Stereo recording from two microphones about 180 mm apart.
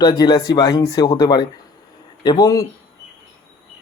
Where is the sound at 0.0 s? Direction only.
20° left (ahead or behind).